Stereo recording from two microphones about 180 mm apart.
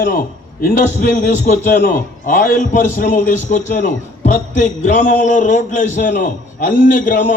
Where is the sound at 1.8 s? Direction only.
50° left (ahead or behind).